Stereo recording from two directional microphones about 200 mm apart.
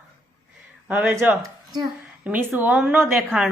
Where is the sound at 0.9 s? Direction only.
10° right (ahead or behind).